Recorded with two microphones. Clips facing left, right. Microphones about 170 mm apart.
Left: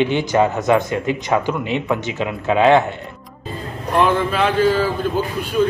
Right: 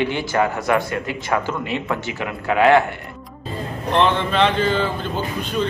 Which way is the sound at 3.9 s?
5° left (ahead or behind).